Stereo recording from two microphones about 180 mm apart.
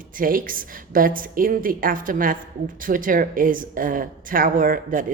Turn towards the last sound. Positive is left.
turn(degrees=-50)  # may be behind; listen again after turning